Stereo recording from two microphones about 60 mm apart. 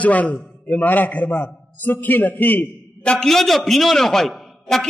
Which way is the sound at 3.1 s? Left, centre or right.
Centre.